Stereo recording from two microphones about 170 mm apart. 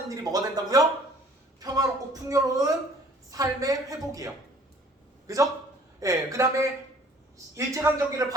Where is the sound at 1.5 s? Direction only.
20° right (ahead or behind).